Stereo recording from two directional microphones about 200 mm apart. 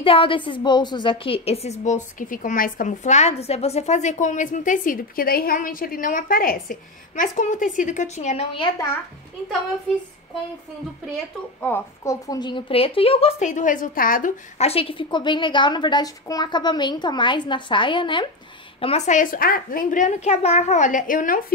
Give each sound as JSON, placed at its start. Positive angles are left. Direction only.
{"t": 0.0, "sound": "a woman's voice", "side_deg": 25}
{"t": 11.6, "sound": "a woman's voice", "side_deg": 15}